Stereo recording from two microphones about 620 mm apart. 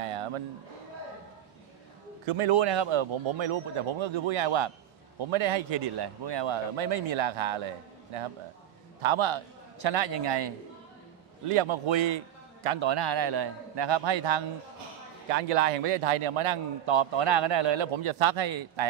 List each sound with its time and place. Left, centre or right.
2.2 s a man's voice: right
9.0 s a man's voice: right
11.4 s a man's voice: right
15.3 s a man's voice: right